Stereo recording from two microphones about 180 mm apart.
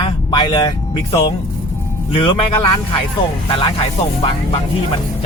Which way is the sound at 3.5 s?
30° left (ahead or behind).